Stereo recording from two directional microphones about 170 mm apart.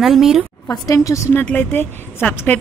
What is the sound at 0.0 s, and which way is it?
Speech, centre (ahead or behind).